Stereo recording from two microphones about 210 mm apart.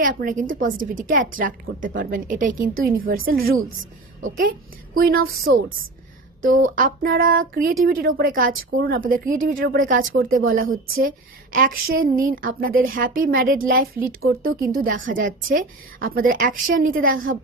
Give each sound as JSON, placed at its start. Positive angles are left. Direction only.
{"t": 0.0, "sound": "a woman's voice", "side_deg": -40}
{"t": 6.4, "sound": "a woman's voice", "side_deg": -40}
{"t": 10.7, "sound": "speech", "side_deg": -70}
{"t": 11.5, "sound": "a woman's voice", "side_deg": -40}